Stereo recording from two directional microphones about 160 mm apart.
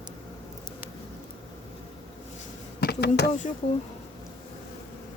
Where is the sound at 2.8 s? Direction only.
90° left.